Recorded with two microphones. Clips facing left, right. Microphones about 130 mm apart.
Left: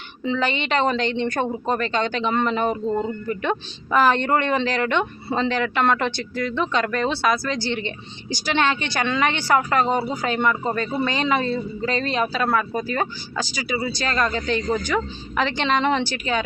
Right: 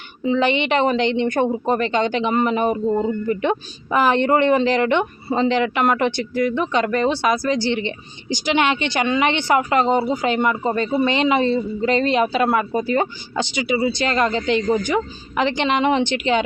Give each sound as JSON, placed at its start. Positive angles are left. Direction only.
{"t": 0.2, "sound": "a woman's voice", "side_deg": -15}